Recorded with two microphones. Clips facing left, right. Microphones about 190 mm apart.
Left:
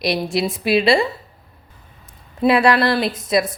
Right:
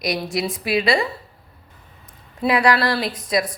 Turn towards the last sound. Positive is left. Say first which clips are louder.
# left 3 dB
turn(degrees=25)  # may be behind; listen again after turning